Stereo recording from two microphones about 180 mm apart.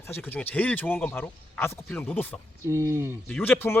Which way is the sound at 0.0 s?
10° left (ahead or behind).